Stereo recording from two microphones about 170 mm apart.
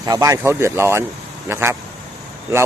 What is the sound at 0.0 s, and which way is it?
Speech, 20° right (ahead or behind).